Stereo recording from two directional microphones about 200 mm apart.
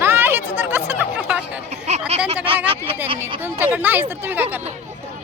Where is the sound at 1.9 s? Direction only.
30° right (ahead or behind).